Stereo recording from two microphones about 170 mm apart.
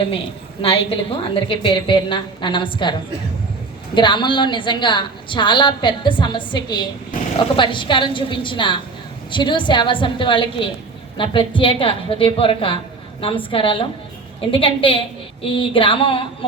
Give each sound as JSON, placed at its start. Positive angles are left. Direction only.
{"t": 0.6, "sound": "a woman's voice", "side_deg": 35}
{"t": 3.9, "sound": "a woman's voice", "side_deg": 30}